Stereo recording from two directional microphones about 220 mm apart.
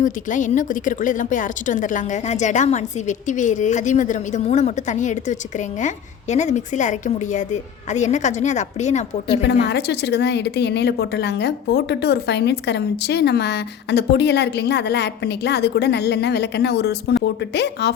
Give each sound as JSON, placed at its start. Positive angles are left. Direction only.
{"t": 0.0, "sound": "a woman's voice", "side_deg": 35}
{"t": 9.3, "sound": "a woman's voice", "side_deg": 50}